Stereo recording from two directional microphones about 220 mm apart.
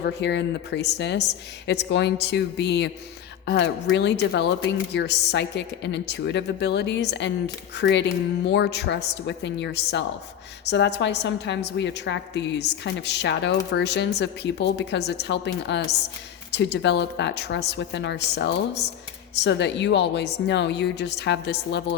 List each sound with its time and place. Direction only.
0.0 s a woman's voice: 50° left (ahead or behind)